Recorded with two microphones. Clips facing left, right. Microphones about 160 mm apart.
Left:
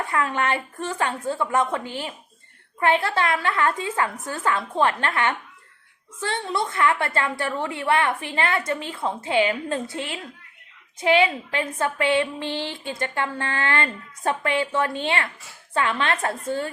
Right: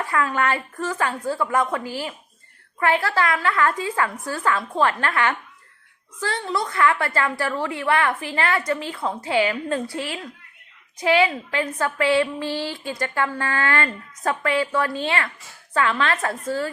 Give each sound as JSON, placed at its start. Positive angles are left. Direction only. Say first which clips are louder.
{"t": 0.0, "sound": "a woman's voice", "louder": "right 2 dB", "side_deg": 25}